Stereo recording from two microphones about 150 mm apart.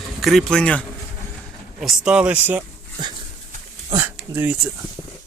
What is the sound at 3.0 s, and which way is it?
Dog, 30° right (ahead or behind).